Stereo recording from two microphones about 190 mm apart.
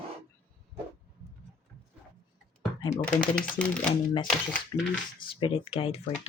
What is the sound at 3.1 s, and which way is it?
Speech, 5° left (ahead or behind).